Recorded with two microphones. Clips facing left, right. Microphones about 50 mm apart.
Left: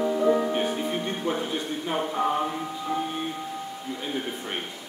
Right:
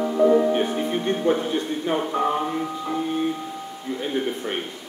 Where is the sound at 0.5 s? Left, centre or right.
Centre.